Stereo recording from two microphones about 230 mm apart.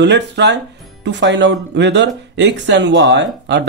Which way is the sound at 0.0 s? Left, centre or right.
Right.